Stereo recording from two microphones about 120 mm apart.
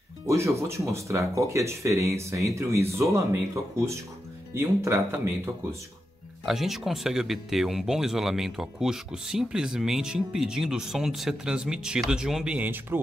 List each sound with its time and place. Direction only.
0.3 s speech: 25° right (ahead or behind)
4.6 s speech: 25° right (ahead or behind)
6.4 s speech: centre (ahead or behind)